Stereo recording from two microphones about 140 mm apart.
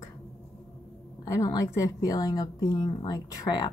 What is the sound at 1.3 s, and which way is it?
A woman's voice, 25° left (ahead or behind).